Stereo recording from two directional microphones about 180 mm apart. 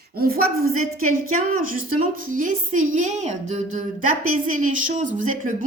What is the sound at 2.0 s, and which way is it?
A woman's voice, 45° right (ahead or behind).